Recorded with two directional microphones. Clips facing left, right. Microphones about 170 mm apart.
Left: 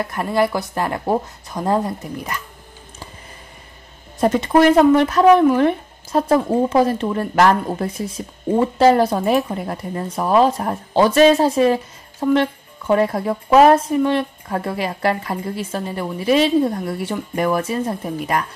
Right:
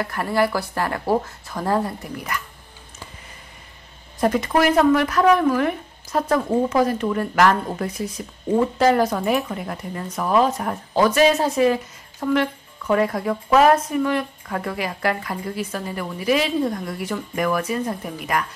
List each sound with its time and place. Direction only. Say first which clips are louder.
0.0 s speech: left 2 dB; 20° left (ahead or behind)
4.2 s speech: left 4 dB; 25° left (ahead or behind)